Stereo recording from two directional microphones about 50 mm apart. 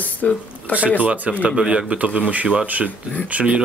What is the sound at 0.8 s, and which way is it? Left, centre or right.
Speech, right.